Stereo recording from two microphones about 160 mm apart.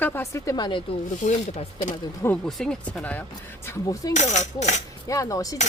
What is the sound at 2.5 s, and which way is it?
Speech, 5° left (ahead or behind).